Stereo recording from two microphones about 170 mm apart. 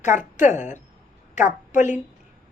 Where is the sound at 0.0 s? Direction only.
50° left (ahead or behind).